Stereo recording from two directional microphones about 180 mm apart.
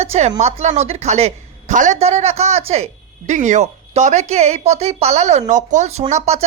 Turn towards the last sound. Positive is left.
turn(degrees=-35)  # may be behind; listen again after turning